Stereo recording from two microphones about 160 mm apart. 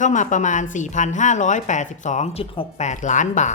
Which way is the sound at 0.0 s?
50° left (ahead or behind).